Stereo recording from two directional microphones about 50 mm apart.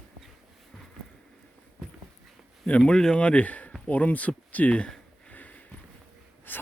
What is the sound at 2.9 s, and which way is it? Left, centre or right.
Speech, centre.